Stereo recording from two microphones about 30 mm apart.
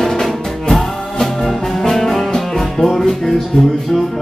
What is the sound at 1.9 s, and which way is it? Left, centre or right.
Music, centre.